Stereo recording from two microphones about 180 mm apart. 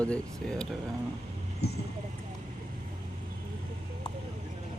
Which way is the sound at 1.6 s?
65° left (ahead or behind).